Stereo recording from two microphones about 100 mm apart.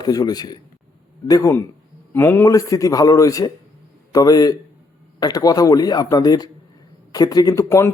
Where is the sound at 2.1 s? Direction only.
20° left (ahead or behind).